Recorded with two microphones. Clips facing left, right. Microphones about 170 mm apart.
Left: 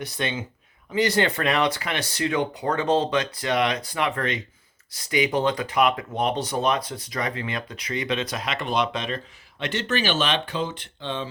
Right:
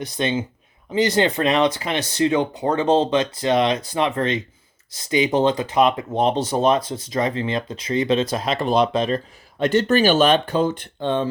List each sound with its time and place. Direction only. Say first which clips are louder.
0.0 s speech: right 6 dB; 20° right (ahead or behind); by 11.3 s 50° right (ahead or behind)